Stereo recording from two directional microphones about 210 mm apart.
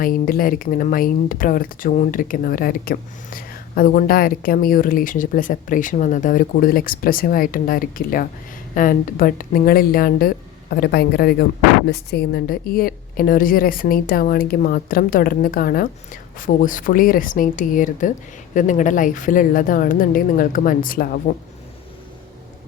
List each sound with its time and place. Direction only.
0.0 s a woman's voice: 40° left (ahead or behind)